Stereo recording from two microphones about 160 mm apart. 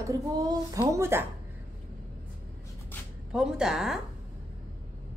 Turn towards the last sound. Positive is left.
turn(degrees=-5)  # may be behind; listen again after turning